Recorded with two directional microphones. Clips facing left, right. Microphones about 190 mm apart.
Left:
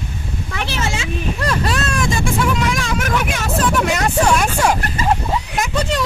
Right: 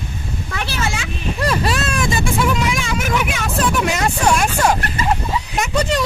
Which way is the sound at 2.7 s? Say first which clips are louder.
Even; 5° right (ahead or behind).